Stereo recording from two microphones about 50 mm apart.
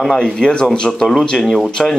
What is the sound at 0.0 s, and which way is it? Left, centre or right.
Speech, centre.